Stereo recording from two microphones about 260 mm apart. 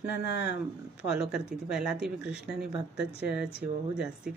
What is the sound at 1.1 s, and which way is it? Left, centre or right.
Speech, centre.